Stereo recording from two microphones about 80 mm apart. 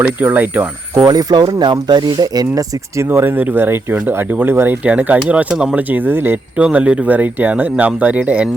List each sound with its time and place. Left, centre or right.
0.0 s speech: right
1.0 s speech: right
3.0 s speech: right; by 5.8 s centre
5.9 s speech: right
6.6 s speech: centre